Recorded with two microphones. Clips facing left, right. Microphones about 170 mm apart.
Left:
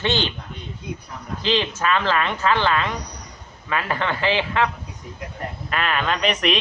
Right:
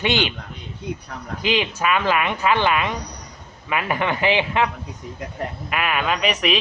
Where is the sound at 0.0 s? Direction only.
15° right (ahead or behind).